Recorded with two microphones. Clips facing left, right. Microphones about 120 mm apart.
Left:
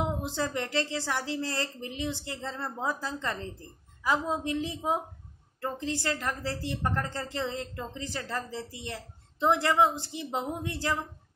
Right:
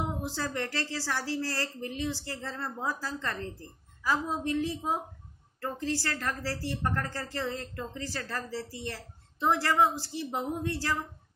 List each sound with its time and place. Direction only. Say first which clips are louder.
0.0 s a woman's voice: left 3 dB; 20° left (ahead or behind)